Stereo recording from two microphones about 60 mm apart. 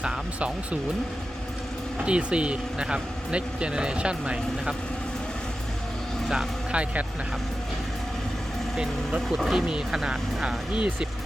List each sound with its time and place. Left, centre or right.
0.0 s speech: centre
2.0 s speech: centre
6.2 s speech: centre
6.7 s speech: centre
9.3 s speech: centre